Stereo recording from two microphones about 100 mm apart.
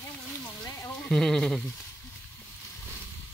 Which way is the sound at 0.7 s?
30° left (ahead or behind).